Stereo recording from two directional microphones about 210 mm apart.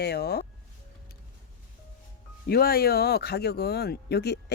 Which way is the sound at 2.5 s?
45° left (ahead or behind).